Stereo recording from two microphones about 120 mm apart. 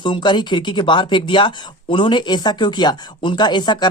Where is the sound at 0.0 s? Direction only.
40° left (ahead or behind).